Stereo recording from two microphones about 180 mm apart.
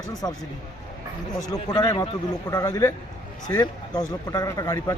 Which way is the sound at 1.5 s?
25° left (ahead or behind).